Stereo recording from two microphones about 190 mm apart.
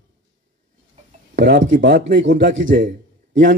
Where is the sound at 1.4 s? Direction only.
65° right (ahead or behind).